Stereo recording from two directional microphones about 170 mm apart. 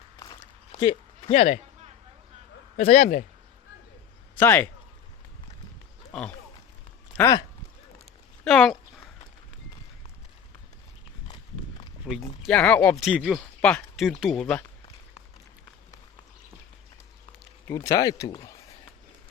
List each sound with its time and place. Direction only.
0.2 s a sound: 25° left (ahead or behind)
2.7 s speech: 50° left (ahead or behind)
4.4 s speech: 10° left (ahead or behind)
6.1 s speech: 5° left (ahead or behind)
8.4 s speech: 5° left (ahead or behind)
12.1 s speech: centre (ahead or behind)
13.0 s speech: 5° right (ahead or behind)
17.7 s speech: 20° left (ahead or behind)